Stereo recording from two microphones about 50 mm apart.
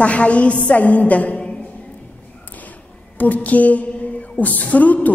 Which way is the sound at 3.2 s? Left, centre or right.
Left.